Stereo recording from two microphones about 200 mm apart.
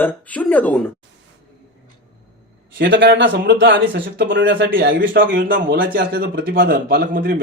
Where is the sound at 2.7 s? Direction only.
65° right (ahead or behind).